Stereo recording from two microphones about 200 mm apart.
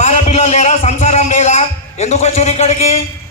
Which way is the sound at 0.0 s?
35° left (ahead or behind).